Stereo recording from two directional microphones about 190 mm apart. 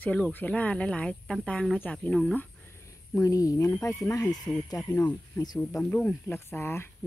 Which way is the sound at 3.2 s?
20° left (ahead or behind).